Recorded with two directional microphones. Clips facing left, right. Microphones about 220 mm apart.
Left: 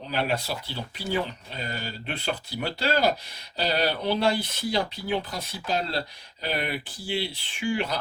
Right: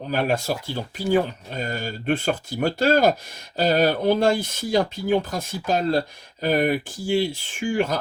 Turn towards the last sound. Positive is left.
turn(degrees=-45)  # may be behind; listen again after turning